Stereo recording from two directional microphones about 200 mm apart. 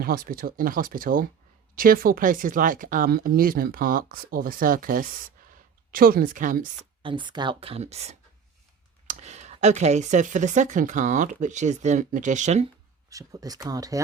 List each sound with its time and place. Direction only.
0.0 s speech: 45° right (ahead or behind)
7.0 s speech: 25° right (ahead or behind)
13.1 s speech: 15° right (ahead or behind)